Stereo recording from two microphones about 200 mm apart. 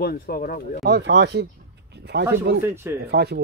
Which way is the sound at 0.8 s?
60° right (ahead or behind).